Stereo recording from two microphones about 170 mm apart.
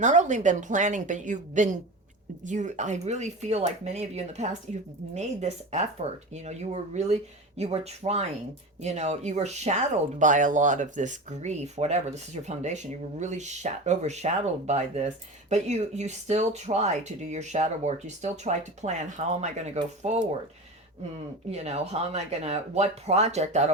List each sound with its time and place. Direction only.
0.0 s speech: 45° right (ahead or behind)
21.5 s speech: 40° right (ahead or behind)